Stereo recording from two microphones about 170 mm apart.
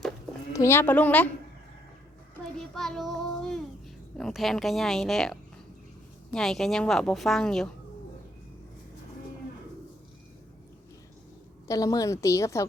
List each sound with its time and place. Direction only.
0.5 s a woman's voice: 15° left (ahead or behind)
2.7 s child singing: centre (ahead or behind)
4.2 s a woman's voice: centre (ahead or behind)
11.7 s a woman's voice: 20° left (ahead or behind)